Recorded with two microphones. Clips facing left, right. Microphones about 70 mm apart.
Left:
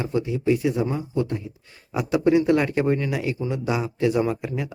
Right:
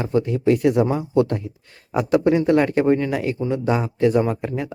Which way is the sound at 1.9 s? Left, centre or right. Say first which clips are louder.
Right 2 dB; right.